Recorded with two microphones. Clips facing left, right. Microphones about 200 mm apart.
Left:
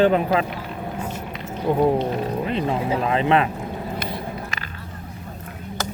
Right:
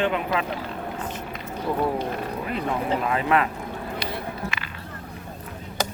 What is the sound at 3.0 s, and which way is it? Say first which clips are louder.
Speech: left 4 dB; 25° left (ahead or behind).